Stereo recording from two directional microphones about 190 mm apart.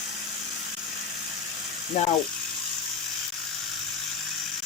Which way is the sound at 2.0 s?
40° left (ahead or behind).